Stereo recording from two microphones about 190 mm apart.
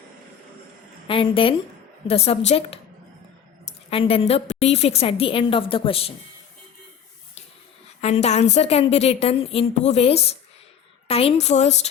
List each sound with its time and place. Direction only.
1.0 s a woman's voice: 30° left (ahead or behind)
3.8 s a woman's voice: 30° left (ahead or behind)
8.0 s a woman's voice: 35° left (ahead or behind)